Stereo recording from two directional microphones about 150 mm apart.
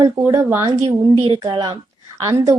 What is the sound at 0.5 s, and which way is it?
Speech, 20° right (ahead or behind).